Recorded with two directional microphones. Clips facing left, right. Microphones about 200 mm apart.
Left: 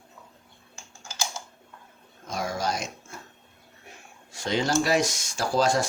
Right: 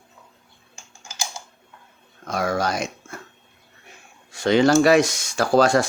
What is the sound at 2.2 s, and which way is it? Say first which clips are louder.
Dog: right 6 dB; 65° right (ahead or behind).